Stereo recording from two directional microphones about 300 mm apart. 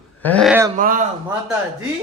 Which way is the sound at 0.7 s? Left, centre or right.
Right.